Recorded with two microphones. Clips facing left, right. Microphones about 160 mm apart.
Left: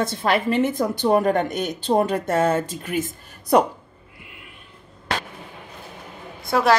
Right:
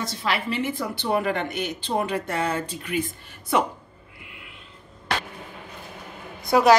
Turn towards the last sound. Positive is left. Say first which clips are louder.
# right 2 dB
turn(degrees=0)  # may be behind; listen again after turning